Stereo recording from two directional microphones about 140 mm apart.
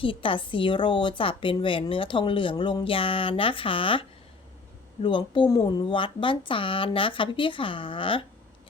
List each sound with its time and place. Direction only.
0.0 s a woman's voice: 40° left (ahead or behind)
5.0 s a woman's voice: 35° left (ahead or behind)